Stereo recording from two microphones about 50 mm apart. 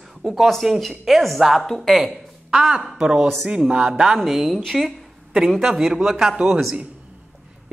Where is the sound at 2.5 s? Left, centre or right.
Centre.